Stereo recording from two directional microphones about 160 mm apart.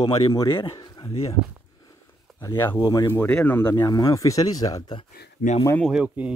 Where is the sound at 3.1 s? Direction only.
10° left (ahead or behind).